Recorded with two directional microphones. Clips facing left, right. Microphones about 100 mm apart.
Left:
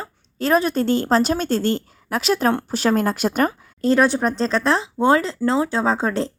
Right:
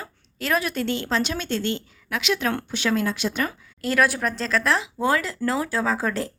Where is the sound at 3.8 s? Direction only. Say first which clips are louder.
Left 5 dB; 30° left (ahead or behind).